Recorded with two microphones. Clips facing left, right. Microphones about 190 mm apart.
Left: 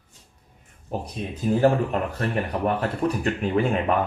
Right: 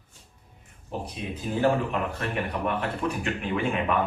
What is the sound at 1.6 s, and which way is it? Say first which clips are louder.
Speech: left 3 dB; 40° left (ahead or behind).